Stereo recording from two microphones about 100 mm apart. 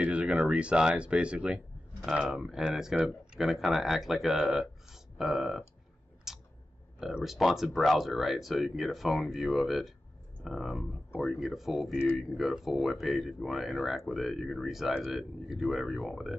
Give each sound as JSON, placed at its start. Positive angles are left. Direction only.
{"t": 0.0, "sound": "speech", "side_deg": -10}
{"t": 6.3, "sound": "a sound", "side_deg": -5}
{"t": 7.0, "sound": "speech", "side_deg": -5}